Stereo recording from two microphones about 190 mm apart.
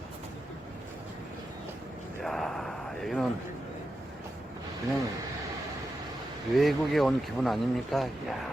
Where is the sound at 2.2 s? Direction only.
Centre (ahead or behind).